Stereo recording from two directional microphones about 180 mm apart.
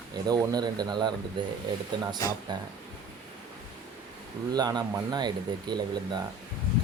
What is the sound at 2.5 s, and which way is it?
Speech, 25° right (ahead or behind).